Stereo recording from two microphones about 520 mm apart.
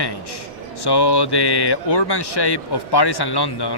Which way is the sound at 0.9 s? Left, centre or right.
Left.